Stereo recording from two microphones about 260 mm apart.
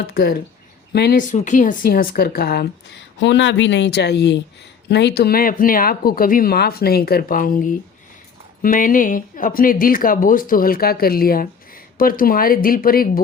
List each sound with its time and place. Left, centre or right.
0.1 s speech: left